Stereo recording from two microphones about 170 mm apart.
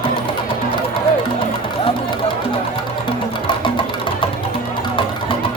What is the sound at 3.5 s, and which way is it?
Music, 30° left (ahead or behind).